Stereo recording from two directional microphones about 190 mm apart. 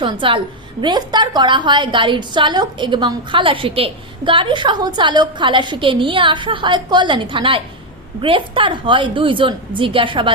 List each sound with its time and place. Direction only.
0.0 s a woman's voice: 25° right (ahead or behind)